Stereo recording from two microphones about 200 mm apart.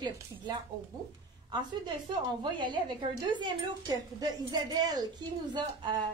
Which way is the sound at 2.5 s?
25° right (ahead or behind).